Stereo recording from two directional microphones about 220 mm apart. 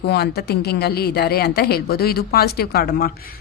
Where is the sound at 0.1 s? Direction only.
45° left (ahead or behind).